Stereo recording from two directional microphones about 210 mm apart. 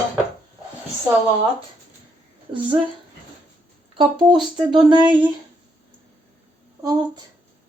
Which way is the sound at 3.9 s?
20° right (ahead or behind).